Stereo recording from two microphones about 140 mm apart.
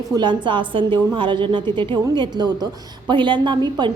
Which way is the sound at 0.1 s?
35° right (ahead or behind).